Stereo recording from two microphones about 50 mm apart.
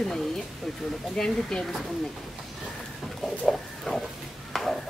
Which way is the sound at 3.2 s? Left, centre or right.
Centre.